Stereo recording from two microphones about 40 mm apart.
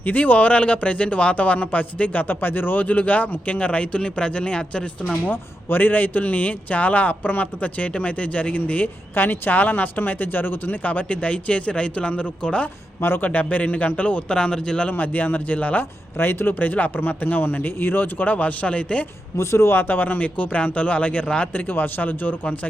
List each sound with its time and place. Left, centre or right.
0.0 s a man's voice: left
2.2 s speech: left
2.8 s a man's voice: left
5.6 s a man's voice: left
9.1 s speech: left
10.8 s a man's voice: left
13.0 s a man's voice: left
13.5 s a man's voice: left
14.3 s speech: left
14.8 s a man's voice: left
15.8 s speech: left
19.5 s a man's voice: left
21.5 s speech: left